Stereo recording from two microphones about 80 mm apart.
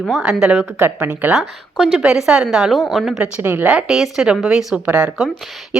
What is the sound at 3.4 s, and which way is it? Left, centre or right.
Speech, right.